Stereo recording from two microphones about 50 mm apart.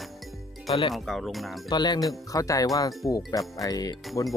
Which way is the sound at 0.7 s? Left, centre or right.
Centre.